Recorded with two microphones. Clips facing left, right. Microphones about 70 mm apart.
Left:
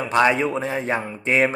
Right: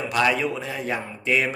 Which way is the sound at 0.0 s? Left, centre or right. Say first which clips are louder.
Left 4 dB; left.